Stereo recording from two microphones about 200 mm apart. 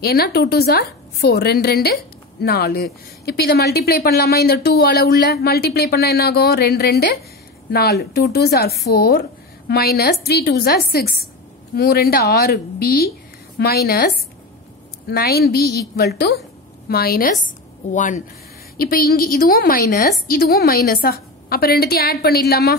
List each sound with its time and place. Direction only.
0.0 s speech: 50° left (ahead or behind)